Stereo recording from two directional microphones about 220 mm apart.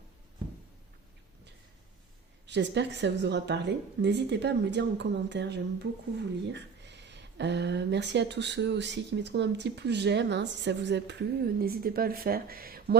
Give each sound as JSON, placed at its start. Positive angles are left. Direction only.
{"t": 2.5, "sound": "speech", "side_deg": -50}